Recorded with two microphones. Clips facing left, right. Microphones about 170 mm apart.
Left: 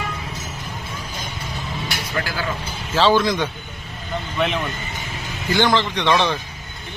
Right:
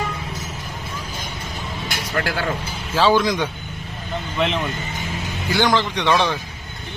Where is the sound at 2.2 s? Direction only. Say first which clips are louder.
Right 3 dB; 60° right (ahead or behind).